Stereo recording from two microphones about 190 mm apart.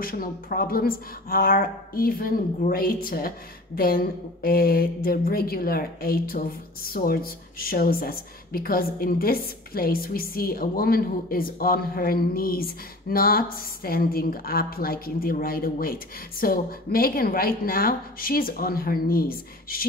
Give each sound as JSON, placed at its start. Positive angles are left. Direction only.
{"t": 0.0, "sound": "a woman's voice", "side_deg": 50}